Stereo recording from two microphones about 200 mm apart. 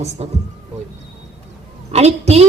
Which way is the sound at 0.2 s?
30° right (ahead or behind).